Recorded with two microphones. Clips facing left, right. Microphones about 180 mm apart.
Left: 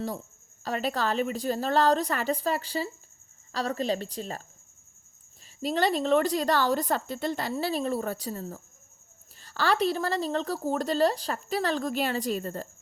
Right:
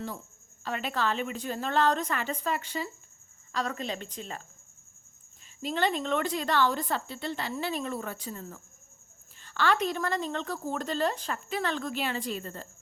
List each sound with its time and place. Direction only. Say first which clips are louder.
0.6 s a woman's voice: left 2 dB; 35° left (ahead or behind)
5.6 s a woman's voice: left 4 dB; 40° left (ahead or behind)